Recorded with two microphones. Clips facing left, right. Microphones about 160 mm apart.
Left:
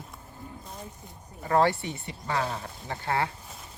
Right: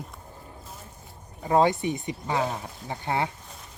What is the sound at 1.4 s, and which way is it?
Speech, 20° right (ahead or behind).